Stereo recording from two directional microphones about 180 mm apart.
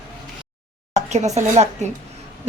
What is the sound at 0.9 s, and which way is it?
Speech, 40° right (ahead or behind).